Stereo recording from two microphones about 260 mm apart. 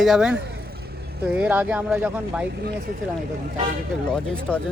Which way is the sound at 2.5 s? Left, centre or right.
Right.